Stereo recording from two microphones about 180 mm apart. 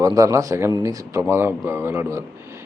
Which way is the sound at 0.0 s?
20° right (ahead or behind).